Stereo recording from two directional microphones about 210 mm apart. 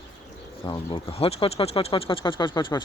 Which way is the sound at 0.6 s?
25° left (ahead or behind).